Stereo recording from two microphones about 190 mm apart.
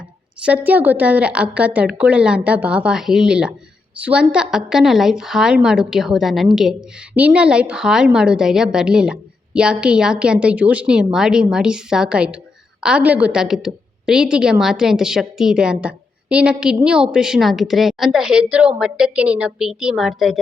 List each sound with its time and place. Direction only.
0.4 s a woman's voice: 10° right (ahead or behind)